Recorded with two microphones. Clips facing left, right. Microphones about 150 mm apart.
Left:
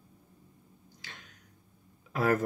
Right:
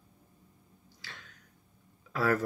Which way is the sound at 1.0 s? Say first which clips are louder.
Right 1 dB; 20° left (ahead or behind).